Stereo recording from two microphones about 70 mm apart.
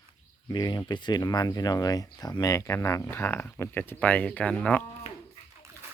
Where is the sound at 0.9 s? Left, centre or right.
Left.